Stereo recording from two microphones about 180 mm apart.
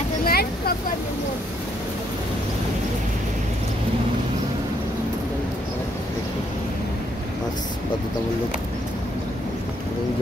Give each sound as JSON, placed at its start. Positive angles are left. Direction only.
{"t": 0.2, "sound": "vehicle", "side_deg": 55}